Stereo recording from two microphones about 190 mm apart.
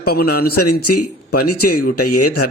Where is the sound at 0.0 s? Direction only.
55° left (ahead or behind).